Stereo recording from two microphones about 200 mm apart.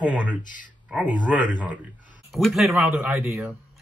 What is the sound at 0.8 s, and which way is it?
Speech, 5° right (ahead or behind).